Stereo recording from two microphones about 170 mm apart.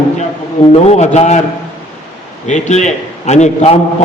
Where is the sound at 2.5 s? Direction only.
45° left (ahead or behind).